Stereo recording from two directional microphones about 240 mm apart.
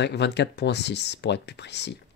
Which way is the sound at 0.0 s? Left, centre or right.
Left.